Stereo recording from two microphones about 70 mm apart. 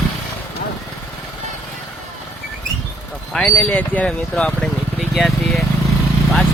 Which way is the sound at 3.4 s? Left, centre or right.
Centre.